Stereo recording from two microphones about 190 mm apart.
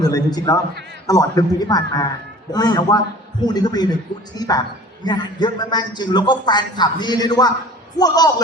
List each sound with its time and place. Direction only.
0.0 s a man's voice: 20° left (ahead or behind)